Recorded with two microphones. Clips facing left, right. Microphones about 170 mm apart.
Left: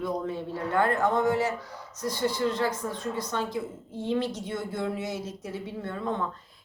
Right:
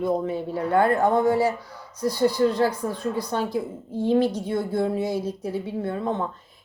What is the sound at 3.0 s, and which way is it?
A woman's voice, 35° right (ahead or behind).